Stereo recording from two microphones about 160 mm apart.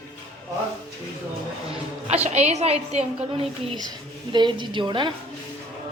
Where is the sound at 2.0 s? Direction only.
45° right (ahead or behind).